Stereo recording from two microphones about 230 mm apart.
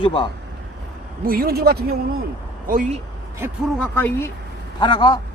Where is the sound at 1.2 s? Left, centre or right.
Right.